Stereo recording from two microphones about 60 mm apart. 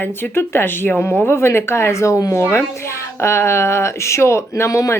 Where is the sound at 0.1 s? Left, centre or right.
Left.